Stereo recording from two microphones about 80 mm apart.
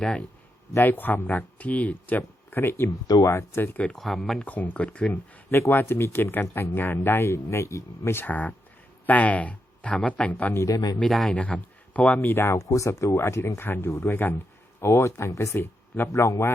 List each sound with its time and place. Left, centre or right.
0.0 s speech: centre
0.7 s speech: left
2.9 s speech: left
3.2 s speech: left
3.9 s speech: centre
4.4 s speech: centre
5.5 s speech: left
10.7 s speech: left
11.0 s speech: centre
11.3 s speech: centre
12.3 s speech: left